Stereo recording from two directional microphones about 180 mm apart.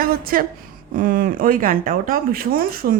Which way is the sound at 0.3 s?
50° right (ahead or behind).